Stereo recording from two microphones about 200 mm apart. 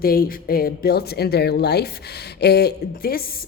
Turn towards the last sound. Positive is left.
turn(degrees=50)  # may be behind; listen again after turning